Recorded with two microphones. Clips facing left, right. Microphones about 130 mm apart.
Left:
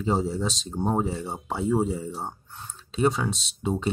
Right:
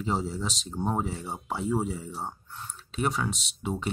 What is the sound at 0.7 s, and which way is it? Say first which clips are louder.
Speech: left 3 dB; 45° left (ahead or behind).